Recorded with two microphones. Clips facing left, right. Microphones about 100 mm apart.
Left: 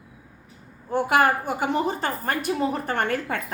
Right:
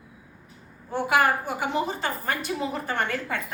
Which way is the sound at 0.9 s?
45° left (ahead or behind).